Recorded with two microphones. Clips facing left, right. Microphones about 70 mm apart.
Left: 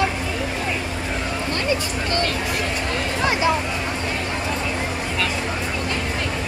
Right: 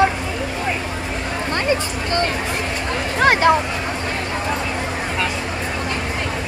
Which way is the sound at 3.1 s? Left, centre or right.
Right.